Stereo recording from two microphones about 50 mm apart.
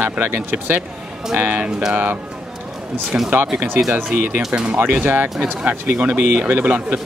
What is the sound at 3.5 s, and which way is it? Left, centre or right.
Speech, right.